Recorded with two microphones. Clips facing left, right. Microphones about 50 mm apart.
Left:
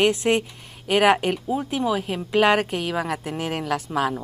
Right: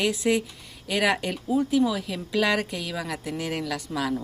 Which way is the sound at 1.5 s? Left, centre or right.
Left.